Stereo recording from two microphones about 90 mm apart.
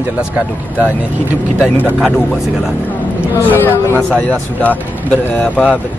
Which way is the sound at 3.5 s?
25° left (ahead or behind).